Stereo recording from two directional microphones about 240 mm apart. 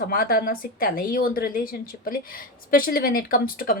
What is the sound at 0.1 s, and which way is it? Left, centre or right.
A woman's voice, left.